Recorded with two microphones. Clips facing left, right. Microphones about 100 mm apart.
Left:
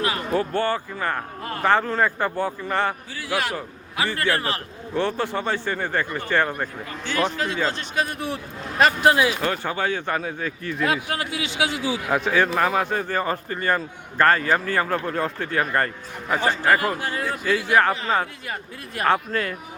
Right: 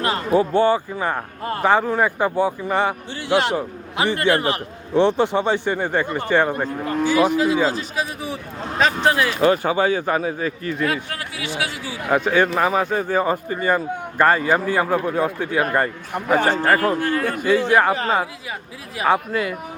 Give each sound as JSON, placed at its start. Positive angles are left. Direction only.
{"t": 0.3, "sound": "speech", "side_deg": -15}
{"t": 3.2, "sound": "a man's voice", "side_deg": -25}
{"t": 9.4, "sound": "speech", "side_deg": -10}
{"t": 10.8, "sound": "speech", "side_deg": 20}
{"t": 12.0, "sound": "speech", "side_deg": 0}
{"t": 16.1, "sound": "a man's voice", "side_deg": -55}
{"t": 16.7, "sound": "speech", "side_deg": 10}
{"t": 17.1, "sound": "a man's voice", "side_deg": -60}
{"t": 17.7, "sound": "speech", "side_deg": -10}
{"t": 18.9, "sound": "speech", "side_deg": -10}